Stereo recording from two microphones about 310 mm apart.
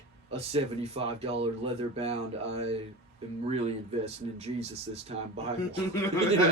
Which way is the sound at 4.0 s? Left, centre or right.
Centre.